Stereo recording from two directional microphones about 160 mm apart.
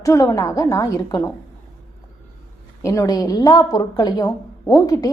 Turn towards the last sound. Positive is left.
turn(degrees=20)  # may be behind; listen again after turning